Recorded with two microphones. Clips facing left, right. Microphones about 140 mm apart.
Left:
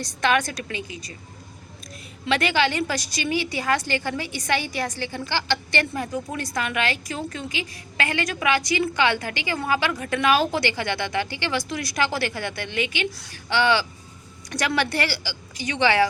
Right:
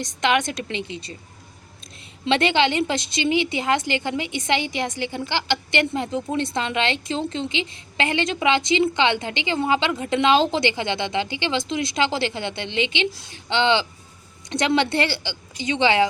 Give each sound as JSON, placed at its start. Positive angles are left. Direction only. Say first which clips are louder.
{"t": 0.0, "sound": "a woman's voice", "louder": "right 1 dB", "side_deg": -20}
{"t": 2.2, "sound": "a woman's voice", "louder": "right 3 dB", "side_deg": -25}